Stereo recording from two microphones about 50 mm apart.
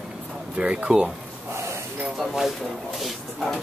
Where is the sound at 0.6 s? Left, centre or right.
Centre.